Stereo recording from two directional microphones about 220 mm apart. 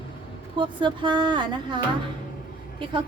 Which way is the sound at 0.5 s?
20° right (ahead or behind).